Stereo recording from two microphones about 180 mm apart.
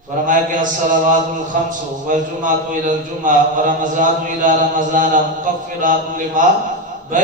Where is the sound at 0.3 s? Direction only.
45° right (ahead or behind).